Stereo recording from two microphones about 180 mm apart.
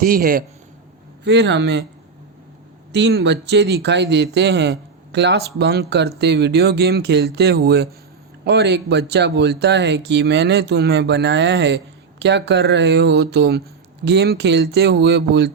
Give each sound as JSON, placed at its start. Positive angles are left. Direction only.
{"t": 0.0, "sound": "a man's voice", "side_deg": -55}
{"t": 1.2, "sound": "speech", "side_deg": -75}
{"t": 2.9, "sound": "speech", "side_deg": -70}